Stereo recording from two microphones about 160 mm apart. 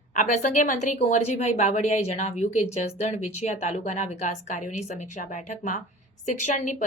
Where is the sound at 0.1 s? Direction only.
50° left (ahead or behind).